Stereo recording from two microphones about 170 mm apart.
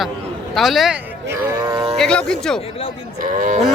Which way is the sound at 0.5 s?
Centre (ahead or behind).